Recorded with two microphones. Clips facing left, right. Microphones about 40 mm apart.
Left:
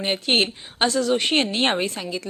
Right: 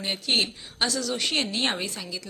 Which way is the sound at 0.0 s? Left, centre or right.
Left.